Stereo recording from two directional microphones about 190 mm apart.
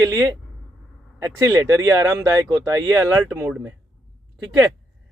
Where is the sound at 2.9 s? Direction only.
10° right (ahead or behind).